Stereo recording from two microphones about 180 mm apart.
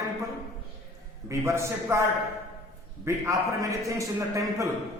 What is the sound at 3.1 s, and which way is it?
A man's voice, 15° right (ahead or behind).